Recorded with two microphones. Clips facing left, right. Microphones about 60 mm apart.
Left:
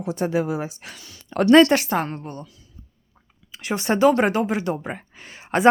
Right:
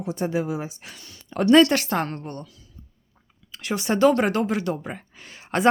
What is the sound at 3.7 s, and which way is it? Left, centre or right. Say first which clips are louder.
Speech: left 2 dB; left.